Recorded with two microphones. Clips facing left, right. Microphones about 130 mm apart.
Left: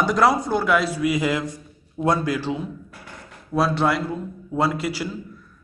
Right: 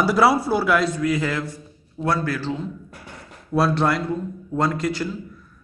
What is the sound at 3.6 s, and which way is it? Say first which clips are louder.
A man's voice: right 1 dB; centre (ahead or behind).